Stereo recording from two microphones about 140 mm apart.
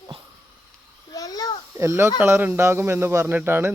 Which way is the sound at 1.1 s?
25° left (ahead or behind).